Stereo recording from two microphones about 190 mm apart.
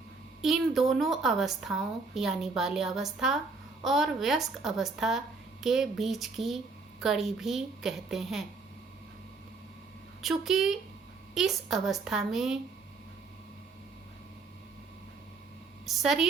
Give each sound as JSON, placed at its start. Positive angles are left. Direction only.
{"t": 0.4, "sound": "a woman's voice", "side_deg": 0}
{"t": 10.2, "sound": "a woman's voice", "side_deg": 0}
{"t": 15.9, "sound": "a woman's voice", "side_deg": 0}